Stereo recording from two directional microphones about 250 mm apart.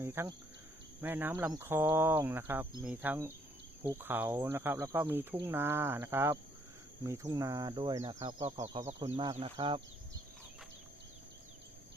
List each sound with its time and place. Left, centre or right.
0.0 s speech: centre
8.6 s speech: centre
8.9 s speech: right